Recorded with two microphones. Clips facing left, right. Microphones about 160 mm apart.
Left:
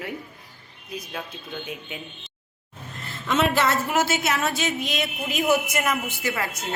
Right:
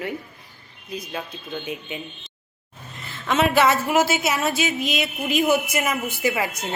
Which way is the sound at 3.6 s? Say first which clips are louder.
Right 4 dB; 90° right.